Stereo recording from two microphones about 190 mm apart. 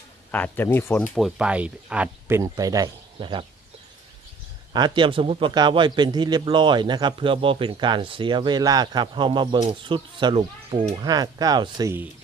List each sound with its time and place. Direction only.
0.3 s speech: 10° left (ahead or behind); by 3.4 s 25° right (ahead or behind)
4.7 s a man's voice: 25° right (ahead or behind)